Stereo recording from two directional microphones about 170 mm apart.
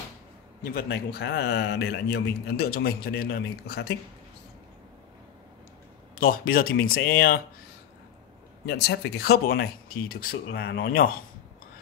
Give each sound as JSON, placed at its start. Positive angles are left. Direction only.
{"t": 0.7, "sound": "a man's voice", "side_deg": 65}
{"t": 6.1, "sound": "speech", "side_deg": 60}
{"t": 8.6, "sound": "a man's voice", "side_deg": 80}